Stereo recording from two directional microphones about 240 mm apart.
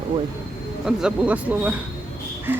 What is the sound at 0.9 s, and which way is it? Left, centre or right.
Speech, centre.